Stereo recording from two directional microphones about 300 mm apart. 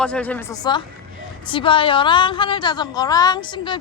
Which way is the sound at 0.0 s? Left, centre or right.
Centre.